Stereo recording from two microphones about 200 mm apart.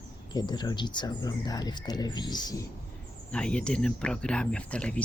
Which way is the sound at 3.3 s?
5° left (ahead or behind).